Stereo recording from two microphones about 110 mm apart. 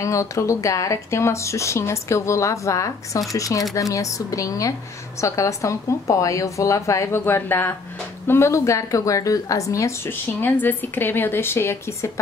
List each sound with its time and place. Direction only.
0.0 s a woman's voice: 30° left (ahead or behind)